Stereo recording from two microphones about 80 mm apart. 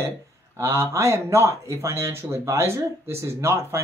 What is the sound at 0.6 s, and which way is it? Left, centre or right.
Speech, right.